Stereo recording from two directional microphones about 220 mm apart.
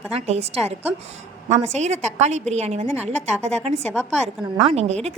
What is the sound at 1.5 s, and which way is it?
A woman's voice, 30° right (ahead or behind).